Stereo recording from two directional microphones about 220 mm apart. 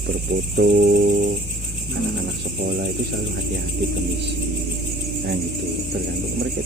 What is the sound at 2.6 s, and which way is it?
Speech, 50° right (ahead or behind).